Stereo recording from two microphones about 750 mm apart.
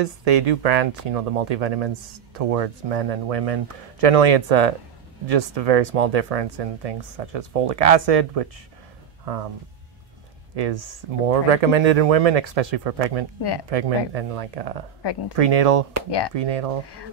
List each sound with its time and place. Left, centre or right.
0.0 s speech: right
9.2 s music: right
10.5 s speech: right
16.1 s speech: left
16.3 s speech: right